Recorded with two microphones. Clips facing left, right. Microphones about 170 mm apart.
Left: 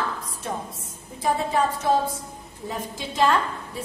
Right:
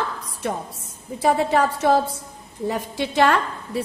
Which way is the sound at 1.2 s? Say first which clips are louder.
Right 4 dB; 75° right (ahead or behind).